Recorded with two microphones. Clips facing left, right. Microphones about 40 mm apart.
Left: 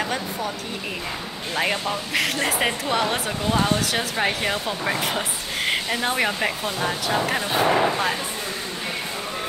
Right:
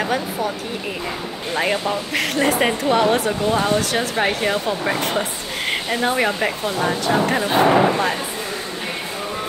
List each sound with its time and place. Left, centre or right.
0.0 s speech: centre
1.6 s speech: centre
7.4 s speech: centre